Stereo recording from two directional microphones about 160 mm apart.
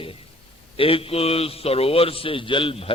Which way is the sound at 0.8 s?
35° left (ahead or behind).